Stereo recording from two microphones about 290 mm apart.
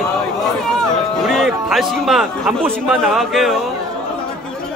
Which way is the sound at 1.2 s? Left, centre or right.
Centre.